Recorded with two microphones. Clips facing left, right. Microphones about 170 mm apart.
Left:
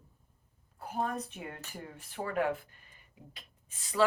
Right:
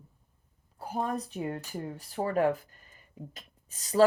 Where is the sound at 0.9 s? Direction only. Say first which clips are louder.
Right 3 dB; 35° right (ahead or behind).